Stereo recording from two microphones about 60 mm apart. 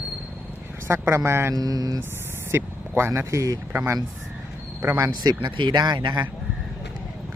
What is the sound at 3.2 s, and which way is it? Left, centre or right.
Speech, right.